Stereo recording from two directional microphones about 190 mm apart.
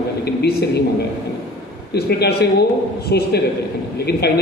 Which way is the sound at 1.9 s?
60° left (ahead or behind).